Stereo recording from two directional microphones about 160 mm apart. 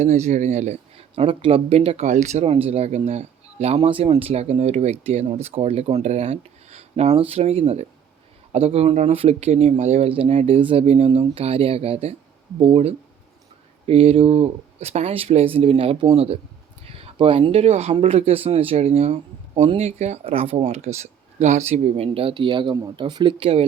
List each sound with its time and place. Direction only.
0.0 s speech: 45° right (ahead or behind)